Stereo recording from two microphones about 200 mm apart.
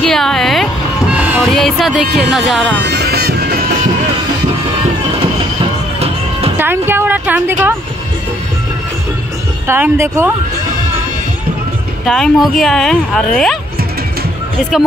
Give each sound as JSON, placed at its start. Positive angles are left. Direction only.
{"t": 0.0, "sound": "music", "side_deg": 0}
{"t": 2.3, "sound": "speech", "side_deg": 0}
{"t": 2.8, "sound": "music", "side_deg": -55}
{"t": 5.2, "sound": "music", "side_deg": -30}
{"t": 6.6, "sound": "a sound", "side_deg": -10}
{"t": 9.7, "sound": "speech", "side_deg": -10}
{"t": 12.1, "sound": "speech", "side_deg": 0}